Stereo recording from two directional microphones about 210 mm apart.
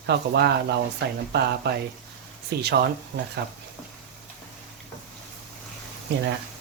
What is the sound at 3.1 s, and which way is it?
Speech, 55° right (ahead or behind).